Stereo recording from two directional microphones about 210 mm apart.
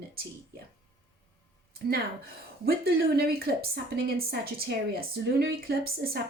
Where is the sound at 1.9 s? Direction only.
45° right (ahead or behind).